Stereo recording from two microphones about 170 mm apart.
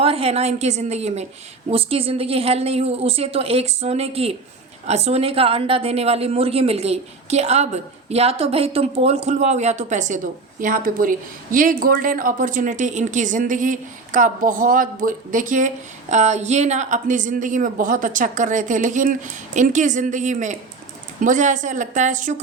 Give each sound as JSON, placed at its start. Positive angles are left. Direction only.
{"t": 0.0, "sound": "a woman's voice", "side_deg": -35}